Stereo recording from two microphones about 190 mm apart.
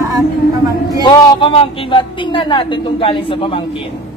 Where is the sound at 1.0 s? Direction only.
25° left (ahead or behind).